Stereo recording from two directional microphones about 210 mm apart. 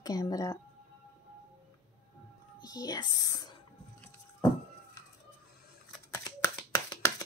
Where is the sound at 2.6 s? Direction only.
20° left (ahead or behind).